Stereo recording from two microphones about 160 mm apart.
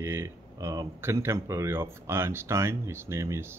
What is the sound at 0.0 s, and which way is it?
Speech, 15° right (ahead or behind).